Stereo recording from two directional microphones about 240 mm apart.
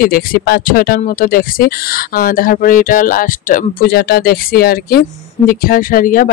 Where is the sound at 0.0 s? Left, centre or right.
Left.